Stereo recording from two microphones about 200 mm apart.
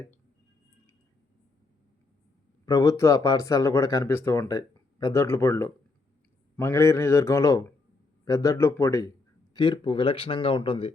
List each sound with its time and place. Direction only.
2.6 s speech: 15° left (ahead or behind)